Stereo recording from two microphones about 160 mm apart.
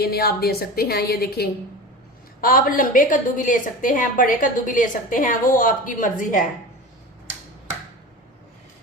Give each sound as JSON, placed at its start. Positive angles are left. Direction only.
{"t": 0.0, "sound": "a woman's voice", "side_deg": 75}
{"t": 2.4, "sound": "a woman's voice", "side_deg": 60}